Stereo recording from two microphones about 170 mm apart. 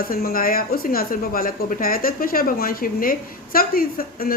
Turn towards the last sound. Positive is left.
turn(degrees=60)  # may be behind; listen again after turning